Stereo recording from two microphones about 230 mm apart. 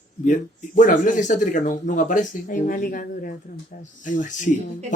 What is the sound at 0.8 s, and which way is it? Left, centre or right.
Speech, left.